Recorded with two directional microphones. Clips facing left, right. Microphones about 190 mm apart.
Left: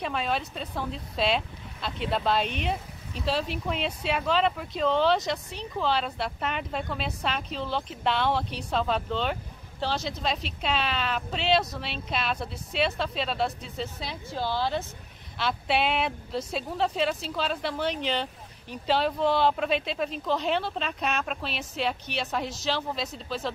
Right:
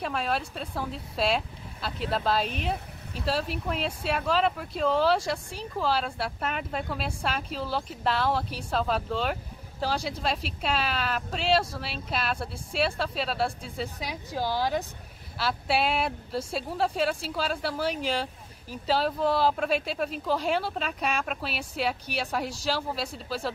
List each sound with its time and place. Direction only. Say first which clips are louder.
0.0 s a woman's voice: even; centre (ahead or behind)